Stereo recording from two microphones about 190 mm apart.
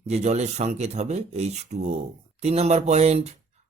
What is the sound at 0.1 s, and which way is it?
A man's voice, 35° right (ahead or behind).